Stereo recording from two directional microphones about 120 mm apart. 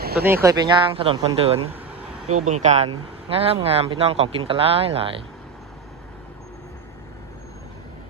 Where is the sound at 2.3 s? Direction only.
75° right (ahead or behind).